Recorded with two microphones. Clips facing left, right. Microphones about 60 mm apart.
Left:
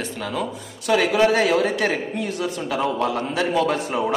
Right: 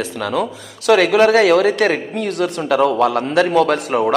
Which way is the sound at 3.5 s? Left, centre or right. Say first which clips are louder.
Right 6 dB; right.